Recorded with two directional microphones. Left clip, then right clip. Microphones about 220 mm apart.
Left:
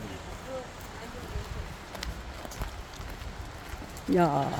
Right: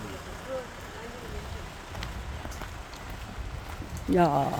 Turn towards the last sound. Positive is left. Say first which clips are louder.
# right 2 dB
turn(degrees=-5)  # may be behind; listen again after turning